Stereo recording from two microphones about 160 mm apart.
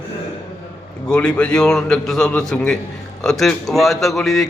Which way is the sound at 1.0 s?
5° left (ahead or behind).